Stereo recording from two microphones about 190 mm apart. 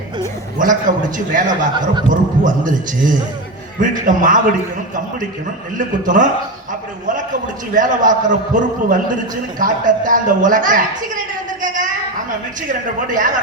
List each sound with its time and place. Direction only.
0.6 s a man's voice: 45° right (ahead or behind)
5.7 s a man's voice: 45° right (ahead or behind)
7.7 s a man's voice: 45° right (ahead or behind)
11.6 s a sound: 45° right (ahead or behind)
12.6 s a man's voice: 45° right (ahead or behind)